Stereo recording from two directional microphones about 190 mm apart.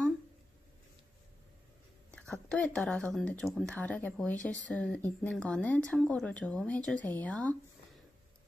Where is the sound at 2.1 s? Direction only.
5° left (ahead or behind).